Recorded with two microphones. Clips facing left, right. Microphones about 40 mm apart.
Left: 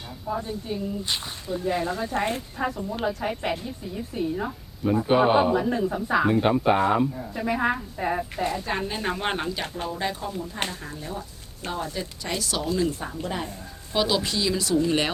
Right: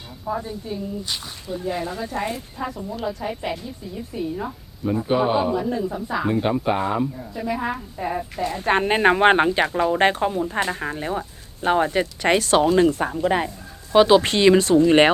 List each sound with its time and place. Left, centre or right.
0.4 s speech: centre
2.1 s speech: left
2.6 s speech: centre
8.5 s speech: right
9.7 s speech: right
13.9 s speech: right
14.2 s speech: right